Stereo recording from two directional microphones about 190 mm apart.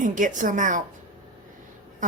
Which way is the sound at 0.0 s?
40° right (ahead or behind).